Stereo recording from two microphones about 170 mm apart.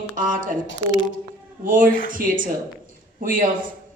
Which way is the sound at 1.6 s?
55° right (ahead or behind).